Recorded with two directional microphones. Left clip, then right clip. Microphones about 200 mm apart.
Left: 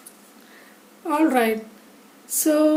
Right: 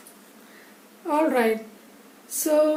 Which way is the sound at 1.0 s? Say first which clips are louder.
Left 2 dB; 50° left (ahead or behind).